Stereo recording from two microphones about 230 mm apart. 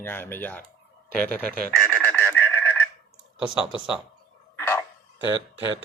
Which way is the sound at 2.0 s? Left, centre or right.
Centre.